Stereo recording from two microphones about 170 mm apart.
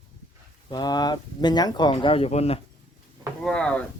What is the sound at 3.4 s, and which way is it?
Speech, 5° left (ahead or behind).